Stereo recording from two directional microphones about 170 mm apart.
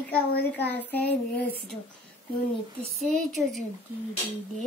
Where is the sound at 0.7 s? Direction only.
10° left (ahead or behind).